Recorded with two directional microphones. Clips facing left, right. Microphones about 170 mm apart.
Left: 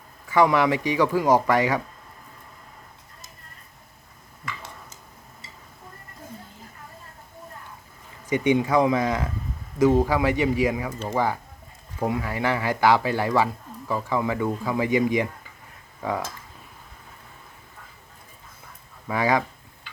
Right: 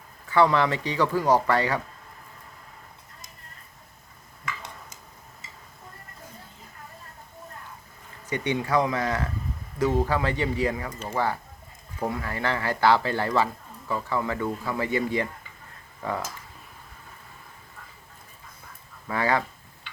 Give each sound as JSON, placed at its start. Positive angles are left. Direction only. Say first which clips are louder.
{"t": 0.3, "sound": "speech", "louder": "left 2 dB", "side_deg": 15}
{"t": 8.3, "sound": "speech", "louder": "left 5 dB", "side_deg": 15}
{"t": 19.0, "sound": "speech", "louder": "left 3 dB", "side_deg": 15}